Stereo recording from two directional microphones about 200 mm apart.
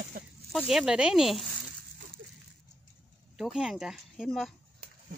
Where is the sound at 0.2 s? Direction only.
45° right (ahead or behind).